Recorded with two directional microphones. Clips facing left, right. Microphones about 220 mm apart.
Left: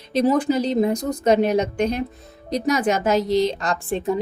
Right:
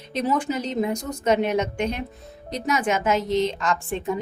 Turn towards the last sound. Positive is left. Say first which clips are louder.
# left 2 dB
turn(degrees=35)  # may be behind; listen again after turning